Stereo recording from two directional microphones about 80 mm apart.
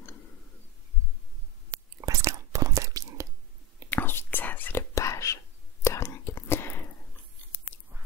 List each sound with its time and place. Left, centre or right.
2.0 s whispering: right
3.9 s whispering: left
4.9 s whispering: left